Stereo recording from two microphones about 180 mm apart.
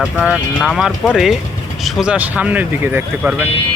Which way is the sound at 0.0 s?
Centre (ahead or behind).